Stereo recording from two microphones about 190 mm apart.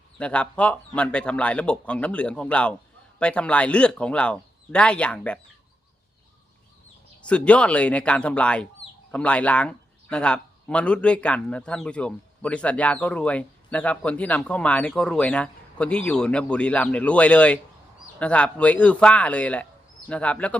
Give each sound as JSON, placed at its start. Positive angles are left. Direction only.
{"t": 0.2, "sound": "speech", "side_deg": 5}
{"t": 7.3, "sound": "a man's voice", "side_deg": 5}